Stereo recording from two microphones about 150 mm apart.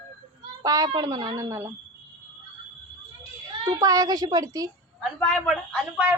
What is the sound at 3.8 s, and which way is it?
Speech, 25° right (ahead or behind).